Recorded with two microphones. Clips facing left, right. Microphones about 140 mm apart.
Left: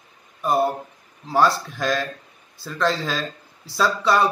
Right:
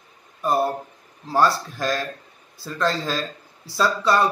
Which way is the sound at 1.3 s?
Centre (ahead or behind).